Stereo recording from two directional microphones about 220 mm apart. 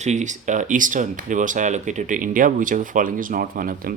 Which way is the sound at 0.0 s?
30° right (ahead or behind).